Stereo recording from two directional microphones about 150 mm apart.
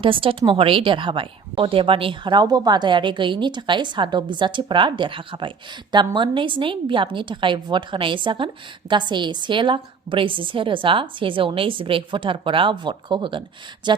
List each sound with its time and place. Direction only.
0.0 s a woman's voice: 35° right (ahead or behind)